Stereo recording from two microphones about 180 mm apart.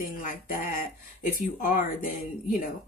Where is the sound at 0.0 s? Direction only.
50° left (ahead or behind).